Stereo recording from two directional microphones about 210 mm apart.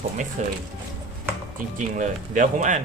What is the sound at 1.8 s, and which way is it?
Speech, 40° right (ahead or behind).